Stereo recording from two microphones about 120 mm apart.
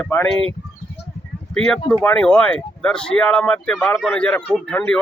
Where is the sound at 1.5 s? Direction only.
5° left (ahead or behind).